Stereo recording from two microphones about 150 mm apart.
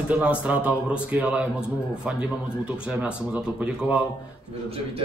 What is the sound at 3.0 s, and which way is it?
Speech, 5° right (ahead or behind).